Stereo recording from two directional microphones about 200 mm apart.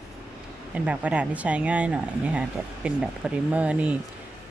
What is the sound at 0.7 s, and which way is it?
Speech, 5° right (ahead or behind).